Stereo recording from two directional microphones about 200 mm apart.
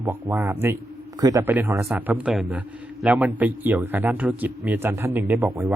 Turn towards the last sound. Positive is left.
turn(degrees=-10)  # may be behind; listen again after turning